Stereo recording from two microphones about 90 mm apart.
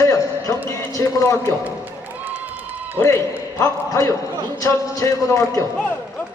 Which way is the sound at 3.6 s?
35° left (ahead or behind).